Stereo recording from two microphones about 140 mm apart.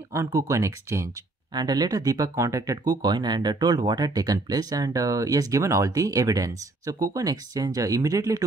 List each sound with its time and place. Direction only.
0.1 s speech: 20° right (ahead or behind)
1.5 s speech: 30° right (ahead or behind)